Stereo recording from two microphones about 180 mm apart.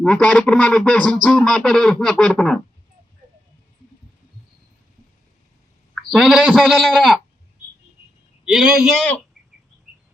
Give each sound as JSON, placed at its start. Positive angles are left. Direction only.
{"t": 0.0, "sound": "speech", "side_deg": 5}
{"t": 5.9, "sound": "speech", "side_deg": 0}
{"t": 8.4, "sound": "speech", "side_deg": -5}